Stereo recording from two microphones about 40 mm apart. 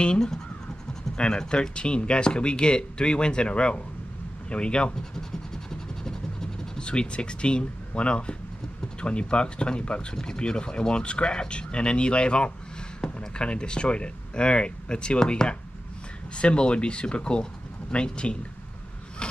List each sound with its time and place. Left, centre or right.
0.0 s speech: centre
6.0 s a sound: centre
6.8 s speech: left
16.3 s speech: left